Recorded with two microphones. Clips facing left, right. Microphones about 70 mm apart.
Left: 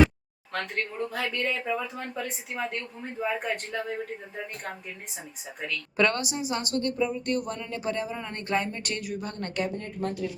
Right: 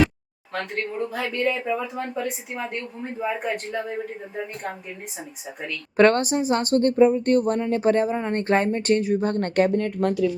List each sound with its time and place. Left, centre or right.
0.5 s speech: centre
6.0 s speech: right
9.2 s speech: right
9.7 s speech: right